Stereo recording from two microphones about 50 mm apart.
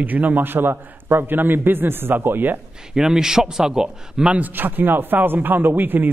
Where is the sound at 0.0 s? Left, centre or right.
Right.